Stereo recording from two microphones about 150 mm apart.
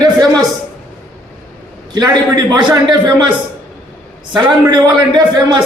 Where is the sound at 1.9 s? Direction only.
25° right (ahead or behind).